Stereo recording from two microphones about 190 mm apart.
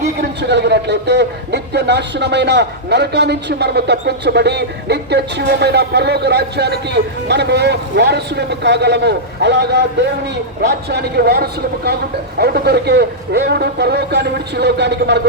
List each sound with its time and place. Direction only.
0.2 s a man's voice: 65° right (ahead or behind)